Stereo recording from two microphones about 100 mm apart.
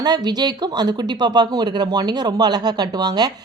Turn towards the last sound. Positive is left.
turn(degrees=-45)  # may be behind; listen again after turning